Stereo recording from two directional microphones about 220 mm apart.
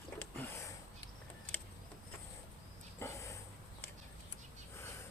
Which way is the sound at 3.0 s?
10° left (ahead or behind).